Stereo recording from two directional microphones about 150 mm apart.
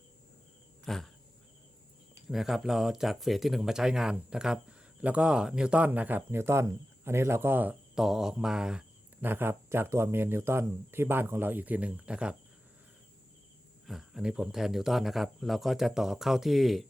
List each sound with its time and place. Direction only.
0.9 s a sound: centre (ahead or behind)
2.3 s speech: centre (ahead or behind)
13.8 s speech: 5° right (ahead or behind)